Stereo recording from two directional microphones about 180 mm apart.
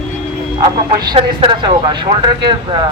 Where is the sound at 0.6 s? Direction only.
25° right (ahead or behind).